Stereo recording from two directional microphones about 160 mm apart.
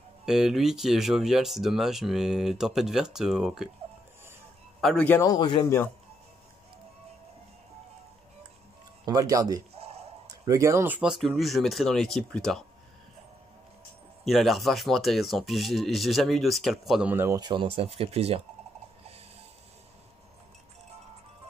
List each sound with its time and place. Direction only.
0.2 s speech: 5° right (ahead or behind)
4.7 s a man's voice: centre (ahead or behind)
5.0 s a man's voice: 15° left (ahead or behind)
5.3 s speech: 30° left (ahead or behind)
9.0 s a man's voice: 20° right (ahead or behind)
9.8 s a sound: 40° right (ahead or behind)
10.2 s speech: 20° right (ahead or behind); by 12.6 s 5° left (ahead or behind)
14.2 s speech: centre (ahead or behind)
17.1 s speech: 15° right (ahead or behind)
17.4 s speech: 30° right (ahead or behind)